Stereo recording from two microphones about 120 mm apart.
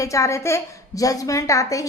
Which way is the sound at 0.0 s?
25° left (ahead or behind).